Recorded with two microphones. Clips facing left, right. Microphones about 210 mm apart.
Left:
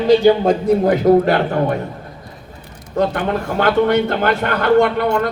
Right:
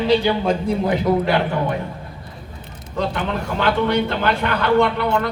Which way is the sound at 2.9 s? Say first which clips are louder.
Left 5 dB; 50° left (ahead or behind).